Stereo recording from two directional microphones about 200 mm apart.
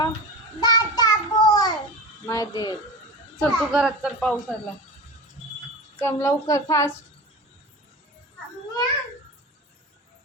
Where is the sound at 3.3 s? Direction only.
Centre (ahead or behind).